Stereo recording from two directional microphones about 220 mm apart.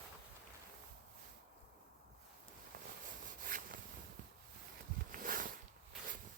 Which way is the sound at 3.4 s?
40° right (ahead or behind).